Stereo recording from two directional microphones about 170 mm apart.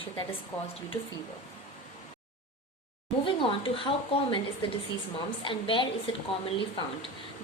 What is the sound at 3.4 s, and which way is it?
Speech, 30° left (ahead or behind).